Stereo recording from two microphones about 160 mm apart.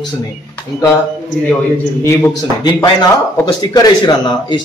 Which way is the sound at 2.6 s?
25° left (ahead or behind).